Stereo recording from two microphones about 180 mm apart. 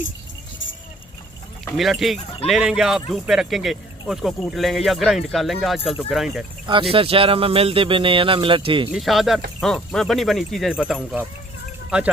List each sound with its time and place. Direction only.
1.6 s speech: centre (ahead or behind)
6.7 s speech: 30° right (ahead or behind)
8.9 s speech: centre (ahead or behind)